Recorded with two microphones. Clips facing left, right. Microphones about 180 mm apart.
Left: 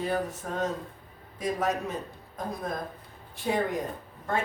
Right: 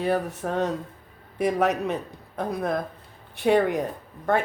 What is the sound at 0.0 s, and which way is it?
A man's voice, 65° right (ahead or behind).